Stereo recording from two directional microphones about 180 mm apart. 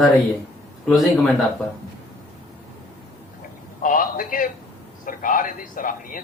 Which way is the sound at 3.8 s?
50° left (ahead or behind).